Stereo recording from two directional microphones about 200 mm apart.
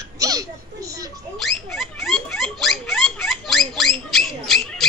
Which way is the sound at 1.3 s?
Centre (ahead or behind).